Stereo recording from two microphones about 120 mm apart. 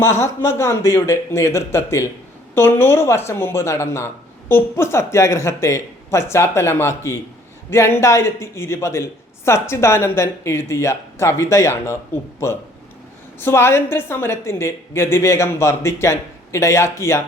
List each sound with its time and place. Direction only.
0.0 s speech: 20° left (ahead or behind)
13.4 s speech: 20° left (ahead or behind)